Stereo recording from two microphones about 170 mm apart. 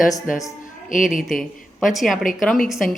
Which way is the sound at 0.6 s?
50° left (ahead or behind).